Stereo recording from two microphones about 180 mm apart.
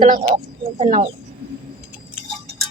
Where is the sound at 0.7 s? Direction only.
40° right (ahead or behind).